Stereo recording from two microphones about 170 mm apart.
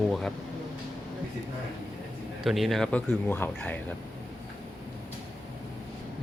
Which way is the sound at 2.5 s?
Centre (ahead or behind).